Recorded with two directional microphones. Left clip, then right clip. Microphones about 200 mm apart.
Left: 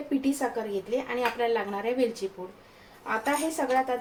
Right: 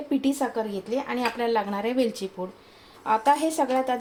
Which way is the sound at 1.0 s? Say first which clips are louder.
Right 2 dB; 40° right (ahead or behind).